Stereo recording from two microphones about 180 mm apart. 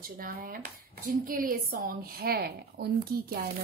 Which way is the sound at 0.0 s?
50° right (ahead or behind).